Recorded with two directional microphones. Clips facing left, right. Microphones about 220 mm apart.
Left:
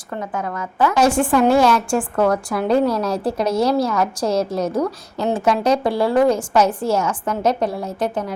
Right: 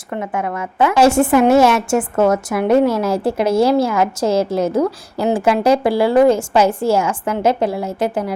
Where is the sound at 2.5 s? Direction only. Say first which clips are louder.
Right 3 dB; 10° right (ahead or behind).